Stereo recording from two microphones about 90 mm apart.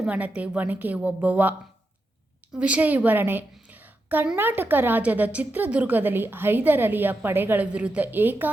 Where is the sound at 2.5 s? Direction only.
15° right (ahead or behind).